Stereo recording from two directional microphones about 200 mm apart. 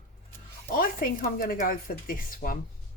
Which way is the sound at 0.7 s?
45° left (ahead or behind).